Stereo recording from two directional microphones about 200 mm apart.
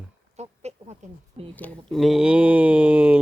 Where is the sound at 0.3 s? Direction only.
35° right (ahead or behind).